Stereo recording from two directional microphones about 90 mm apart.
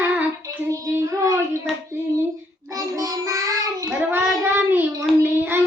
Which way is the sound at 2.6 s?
40° right (ahead or behind).